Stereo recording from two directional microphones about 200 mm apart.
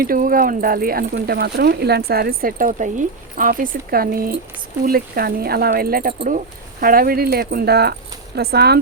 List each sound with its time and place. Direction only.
0.0 s speech: 45° right (ahead or behind)